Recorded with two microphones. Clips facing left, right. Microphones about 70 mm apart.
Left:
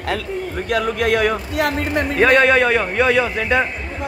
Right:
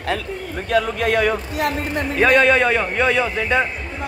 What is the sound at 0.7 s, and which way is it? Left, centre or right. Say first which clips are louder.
Speech: even; left.